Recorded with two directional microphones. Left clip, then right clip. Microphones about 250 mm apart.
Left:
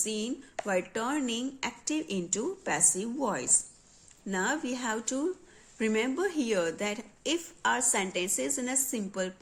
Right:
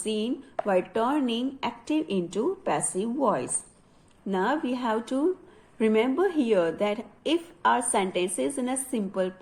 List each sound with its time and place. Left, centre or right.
0.0 s a woman's voice: centre